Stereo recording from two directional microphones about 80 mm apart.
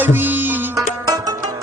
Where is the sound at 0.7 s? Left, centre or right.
Right.